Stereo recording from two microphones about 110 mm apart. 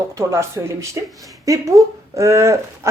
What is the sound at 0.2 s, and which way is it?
Speech, 25° right (ahead or behind).